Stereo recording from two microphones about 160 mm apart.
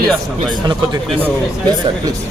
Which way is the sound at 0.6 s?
25° right (ahead or behind).